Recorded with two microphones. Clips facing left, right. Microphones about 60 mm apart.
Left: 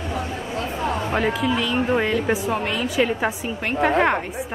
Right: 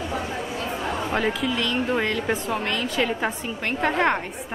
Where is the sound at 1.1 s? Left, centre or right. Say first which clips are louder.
Left 2 dB; centre.